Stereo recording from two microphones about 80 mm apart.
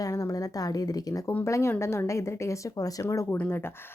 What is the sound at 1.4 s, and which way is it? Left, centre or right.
Speech, left.